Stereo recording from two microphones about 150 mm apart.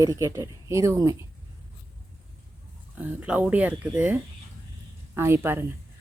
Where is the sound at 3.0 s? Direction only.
10° right (ahead or behind).